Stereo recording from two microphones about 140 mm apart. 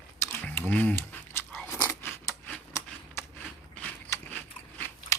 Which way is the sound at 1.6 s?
20° left (ahead or behind).